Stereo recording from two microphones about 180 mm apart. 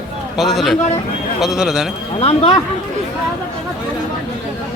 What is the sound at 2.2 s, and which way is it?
Speech, 35° left (ahead or behind).